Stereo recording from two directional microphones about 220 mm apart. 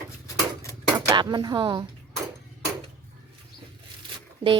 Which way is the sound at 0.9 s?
20° right (ahead or behind).